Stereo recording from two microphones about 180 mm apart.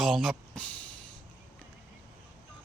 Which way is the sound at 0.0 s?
Centre (ahead or behind).